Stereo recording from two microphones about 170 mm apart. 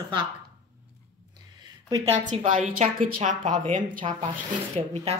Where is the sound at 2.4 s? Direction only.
50° right (ahead or behind).